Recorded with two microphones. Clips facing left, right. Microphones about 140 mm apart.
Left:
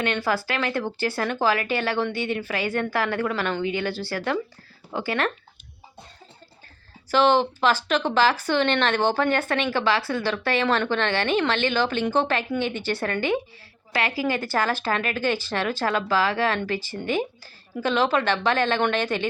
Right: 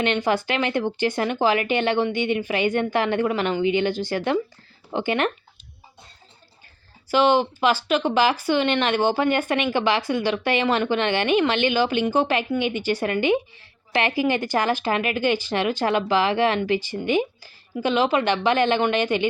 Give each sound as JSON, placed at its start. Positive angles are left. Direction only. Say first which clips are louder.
{"t": 0.0, "sound": "speech", "louder": "right 3 dB", "side_deg": -20}
{"t": 7.1, "sound": "speech", "louder": "right 1 dB", "side_deg": -10}